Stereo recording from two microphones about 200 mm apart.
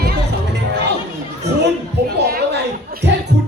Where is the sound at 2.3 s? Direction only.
50° right (ahead or behind).